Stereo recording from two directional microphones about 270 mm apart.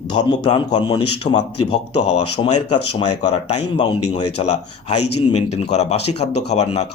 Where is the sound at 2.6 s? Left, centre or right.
Left.